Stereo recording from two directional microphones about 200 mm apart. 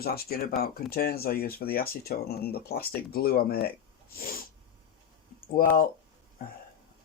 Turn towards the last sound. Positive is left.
turn(degrees=45)  # may be behind; listen again after turning